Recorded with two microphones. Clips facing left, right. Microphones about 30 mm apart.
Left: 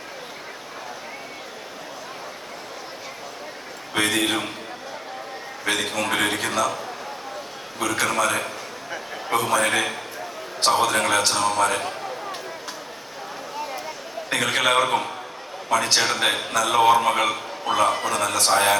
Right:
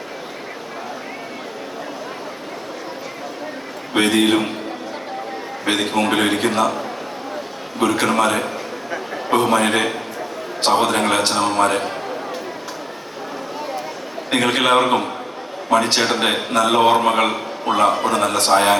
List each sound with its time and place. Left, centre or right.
3.9 s a man's voice: right
5.6 s a man's voice: right
7.8 s a man's voice: right
14.3 s a man's voice: right